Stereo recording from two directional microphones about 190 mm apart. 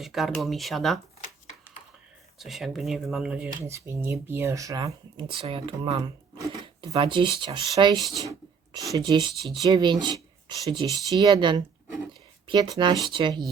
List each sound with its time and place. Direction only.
0.0 s speech: centre (ahead or behind)
2.4 s speech: centre (ahead or behind); by 13.4 s 25° right (ahead or behind)